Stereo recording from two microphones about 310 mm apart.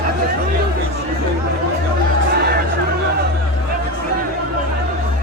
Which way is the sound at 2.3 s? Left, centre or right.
Right.